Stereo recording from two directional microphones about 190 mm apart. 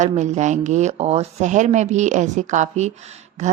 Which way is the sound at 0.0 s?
40° right (ahead or behind).